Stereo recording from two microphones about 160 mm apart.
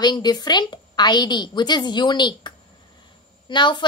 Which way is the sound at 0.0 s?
25° left (ahead or behind).